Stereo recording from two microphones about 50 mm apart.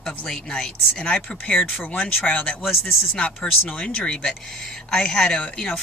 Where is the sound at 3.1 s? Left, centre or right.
Centre.